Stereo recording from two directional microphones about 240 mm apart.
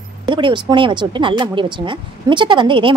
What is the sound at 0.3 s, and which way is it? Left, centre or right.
A woman's voice, centre.